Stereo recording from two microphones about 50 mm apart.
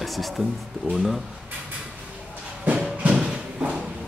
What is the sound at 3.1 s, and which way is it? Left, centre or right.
Clip-clop, centre.